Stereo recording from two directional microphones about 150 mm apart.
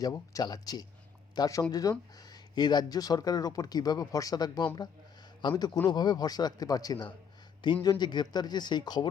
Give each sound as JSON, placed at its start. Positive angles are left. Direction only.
{"t": 0.0, "sound": "speech", "side_deg": 25}